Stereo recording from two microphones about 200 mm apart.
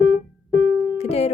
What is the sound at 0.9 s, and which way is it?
Music, 30° left (ahead or behind).